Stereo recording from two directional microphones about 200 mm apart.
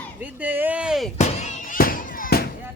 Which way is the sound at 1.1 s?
35° left (ahead or behind).